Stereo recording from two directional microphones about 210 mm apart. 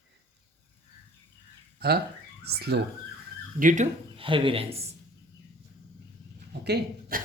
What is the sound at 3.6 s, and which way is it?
Speech, 35° right (ahead or behind).